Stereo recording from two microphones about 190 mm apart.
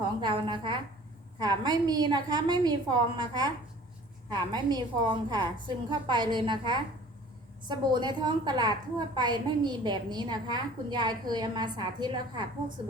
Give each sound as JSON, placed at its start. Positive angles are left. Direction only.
{"t": 0.2, "sound": "a woman's voice", "side_deg": -25}